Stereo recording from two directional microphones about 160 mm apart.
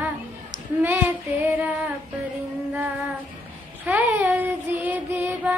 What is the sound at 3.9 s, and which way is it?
Child singing, 10° right (ahead or behind).